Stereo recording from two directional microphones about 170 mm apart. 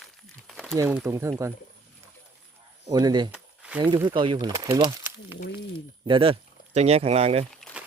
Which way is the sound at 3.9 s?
30° right (ahead or behind).